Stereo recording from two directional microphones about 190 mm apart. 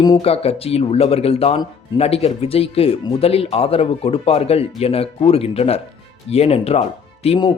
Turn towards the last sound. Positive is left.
turn(degrees=30)  # may be behind; listen again after turning